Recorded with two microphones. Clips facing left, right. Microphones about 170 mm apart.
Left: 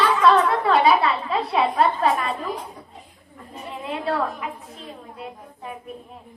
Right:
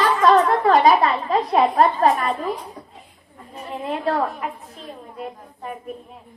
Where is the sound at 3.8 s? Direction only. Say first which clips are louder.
Right 2 dB; 45° right (ahead or behind).